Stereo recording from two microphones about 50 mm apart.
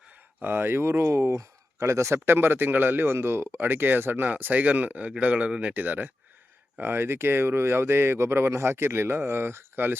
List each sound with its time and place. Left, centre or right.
0.3 s speech: right
2.3 s speech: right
6.7 s speech: right